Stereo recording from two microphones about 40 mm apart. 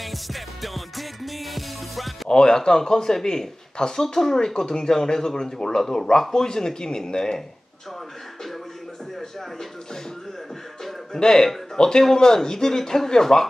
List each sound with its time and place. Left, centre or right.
0.0 s music: centre
2.2 s speech: centre
11.1 s speech: centre